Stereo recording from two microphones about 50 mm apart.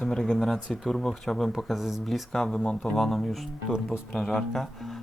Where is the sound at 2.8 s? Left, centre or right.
Centre.